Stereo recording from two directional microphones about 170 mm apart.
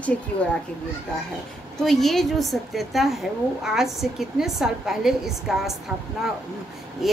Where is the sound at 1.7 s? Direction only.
Centre (ahead or behind).